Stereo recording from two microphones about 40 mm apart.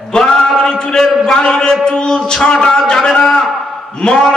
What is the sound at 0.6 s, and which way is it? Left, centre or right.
Music, left.